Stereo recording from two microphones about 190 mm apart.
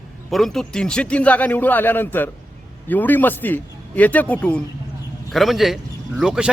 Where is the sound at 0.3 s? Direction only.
Centre (ahead or behind).